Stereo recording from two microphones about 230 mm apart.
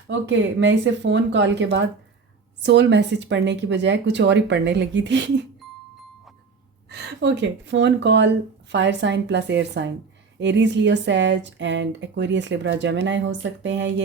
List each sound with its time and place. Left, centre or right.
0.1 s speech: right
6.9 s speech: right